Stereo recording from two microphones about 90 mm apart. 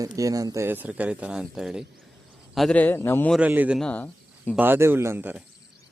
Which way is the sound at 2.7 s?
20° left (ahead or behind).